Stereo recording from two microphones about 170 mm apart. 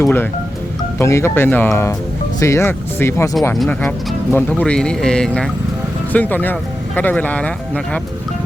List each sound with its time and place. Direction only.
0.0 s speech: 10° left (ahead or behind)